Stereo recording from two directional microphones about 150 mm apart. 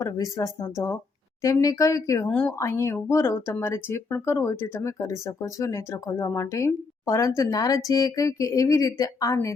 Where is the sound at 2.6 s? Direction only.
20° left (ahead or behind).